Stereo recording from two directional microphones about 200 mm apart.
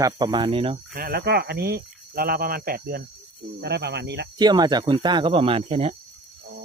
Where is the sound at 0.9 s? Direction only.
50° right (ahead or behind).